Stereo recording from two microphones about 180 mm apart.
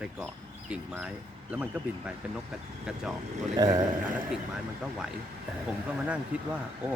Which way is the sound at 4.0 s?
5° right (ahead or behind).